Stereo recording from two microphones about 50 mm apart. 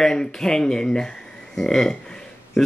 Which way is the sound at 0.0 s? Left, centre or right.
Centre.